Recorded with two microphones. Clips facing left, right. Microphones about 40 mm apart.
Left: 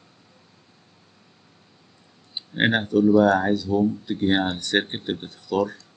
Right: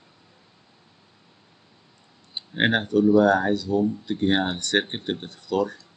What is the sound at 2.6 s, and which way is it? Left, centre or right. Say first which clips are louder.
Speech: left 1 dB; centre.